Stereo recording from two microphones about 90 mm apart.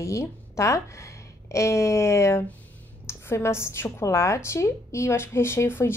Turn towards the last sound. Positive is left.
turn(degrees=25)  # may be behind; listen again after turning